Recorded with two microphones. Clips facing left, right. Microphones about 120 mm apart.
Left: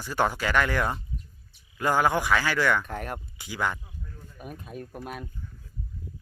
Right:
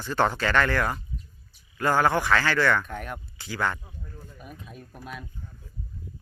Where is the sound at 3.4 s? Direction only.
15° left (ahead or behind).